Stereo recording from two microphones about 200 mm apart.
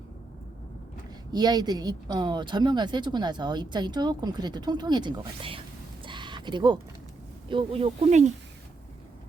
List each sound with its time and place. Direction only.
1.3 s speech: 20° right (ahead or behind)
6.1 s a sound: 25° right (ahead or behind)
7.4 s speech: 25° right (ahead or behind)